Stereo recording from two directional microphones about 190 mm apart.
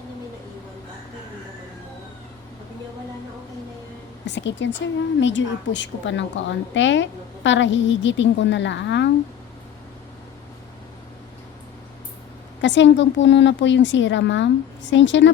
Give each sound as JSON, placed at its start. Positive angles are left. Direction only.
{"t": 4.3, "sound": "a woman's voice", "side_deg": 70}
{"t": 12.6, "sound": "a woman's voice", "side_deg": 70}